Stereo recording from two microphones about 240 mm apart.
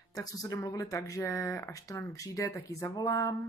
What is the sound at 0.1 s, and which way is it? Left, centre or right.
Female singing, centre.